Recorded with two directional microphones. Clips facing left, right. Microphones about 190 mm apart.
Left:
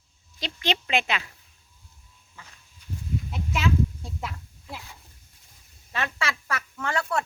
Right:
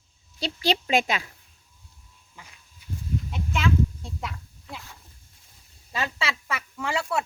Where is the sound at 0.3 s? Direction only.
35° right (ahead or behind).